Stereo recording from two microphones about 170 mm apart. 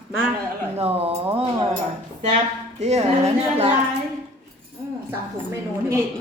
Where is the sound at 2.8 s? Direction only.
40° right (ahead or behind).